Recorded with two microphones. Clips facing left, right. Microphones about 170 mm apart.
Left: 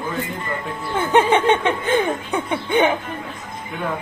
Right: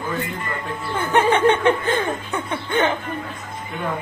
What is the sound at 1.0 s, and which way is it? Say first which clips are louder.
A man's voice: left 1 dB; 20° left (ahead or behind).